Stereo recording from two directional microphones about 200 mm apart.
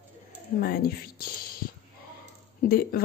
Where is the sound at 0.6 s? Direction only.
45° left (ahead or behind).